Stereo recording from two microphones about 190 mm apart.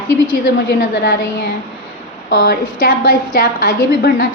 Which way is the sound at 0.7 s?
60° left (ahead or behind).